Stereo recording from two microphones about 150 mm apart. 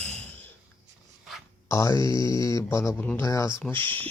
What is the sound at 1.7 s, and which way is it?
Speech, 20° left (ahead or behind).